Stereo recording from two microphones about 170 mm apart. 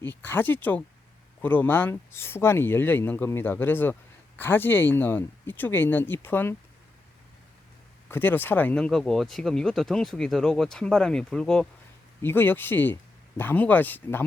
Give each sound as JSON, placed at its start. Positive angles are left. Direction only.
{"t": 0.0, "sound": "speech", "side_deg": 10}
{"t": 8.1, "sound": "speech", "side_deg": 10}